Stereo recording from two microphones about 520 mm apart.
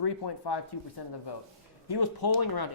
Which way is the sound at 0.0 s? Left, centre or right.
Left.